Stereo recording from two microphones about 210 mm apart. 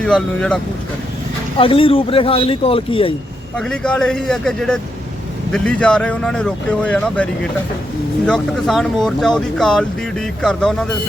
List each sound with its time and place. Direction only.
0.0 s speech: 5° left (ahead or behind)
1.5 s speech: 25° left (ahead or behind)
3.6 s speech: 5° left (ahead or behind)
8.3 s speech: centre (ahead or behind)